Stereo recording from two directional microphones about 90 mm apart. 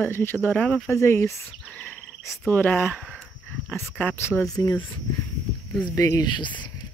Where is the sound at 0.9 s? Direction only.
35° left (ahead or behind).